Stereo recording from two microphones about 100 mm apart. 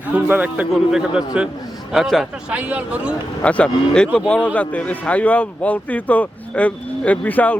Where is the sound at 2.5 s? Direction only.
15° right (ahead or behind).